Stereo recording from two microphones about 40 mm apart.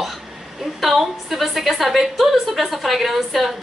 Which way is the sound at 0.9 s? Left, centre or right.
Centre.